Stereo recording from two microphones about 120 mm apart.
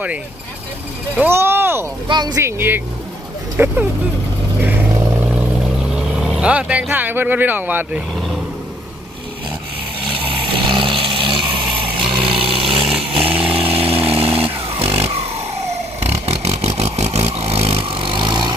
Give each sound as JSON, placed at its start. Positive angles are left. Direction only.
{"t": 1.1, "sound": "speech", "side_deg": -15}
{"t": 2.0, "sound": "speech", "side_deg": -35}
{"t": 2.4, "sound": "speech", "side_deg": -15}
{"t": 4.6, "sound": "vehicle", "side_deg": -15}
{"t": 5.9, "sound": "speech", "side_deg": -5}
{"t": 10.2, "sound": "vehicle", "side_deg": -45}
{"t": 12.5, "sound": "chainsaw", "side_deg": -50}
{"t": 16.1, "sound": "vehicle", "side_deg": -60}
{"t": 17.7, "sound": "vehicle", "side_deg": -45}